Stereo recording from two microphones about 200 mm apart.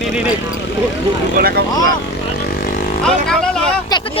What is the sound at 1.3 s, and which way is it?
Speech, 50° right (ahead or behind).